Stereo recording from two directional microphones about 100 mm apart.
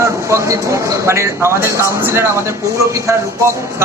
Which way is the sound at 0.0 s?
30° right (ahead or behind).